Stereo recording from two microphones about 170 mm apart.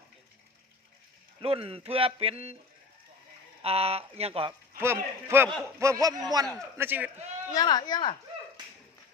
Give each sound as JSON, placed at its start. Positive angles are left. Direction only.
{"t": 1.4, "sound": "speech", "side_deg": -35}
{"t": 3.6, "sound": "speech", "side_deg": -35}
{"t": 4.8, "sound": "a man's voice", "side_deg": -15}
{"t": 6.7, "sound": "a man's voice", "side_deg": -10}
{"t": 7.5, "sound": "speech", "side_deg": 25}